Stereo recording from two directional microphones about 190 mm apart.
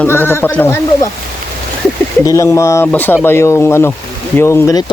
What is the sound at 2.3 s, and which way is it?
Speech, 15° left (ahead or behind).